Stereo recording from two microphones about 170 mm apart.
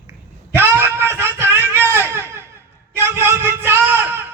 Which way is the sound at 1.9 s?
15° right (ahead or behind).